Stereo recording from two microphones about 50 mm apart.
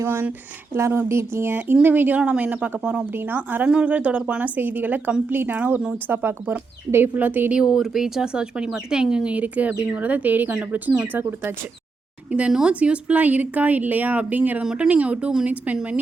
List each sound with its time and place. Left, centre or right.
0.8 s speech: right
1.5 s speech: right
3.1 s speech: right
3.7 s speech: right
5.5 s speech: right
6.9 s speech: right
7.5 s speech: centre
9.3 s speech: right
12.3 s speech: centre; by 14.6 s right
14.6 s speech: centre
14.8 s speech: right